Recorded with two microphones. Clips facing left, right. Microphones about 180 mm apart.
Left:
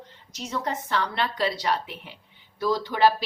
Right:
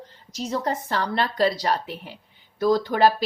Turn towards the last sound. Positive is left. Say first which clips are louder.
# right 3 dB
turn(degrees=-45)  # may be behind; listen again after turning